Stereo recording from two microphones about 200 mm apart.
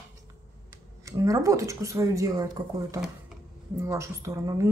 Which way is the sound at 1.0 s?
15° right (ahead or behind).